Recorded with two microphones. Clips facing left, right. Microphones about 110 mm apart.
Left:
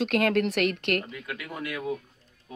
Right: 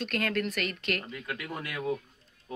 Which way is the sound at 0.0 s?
70° left (ahead or behind).